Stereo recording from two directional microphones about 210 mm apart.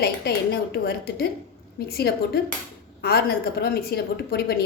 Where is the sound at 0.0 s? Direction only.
50° left (ahead or behind).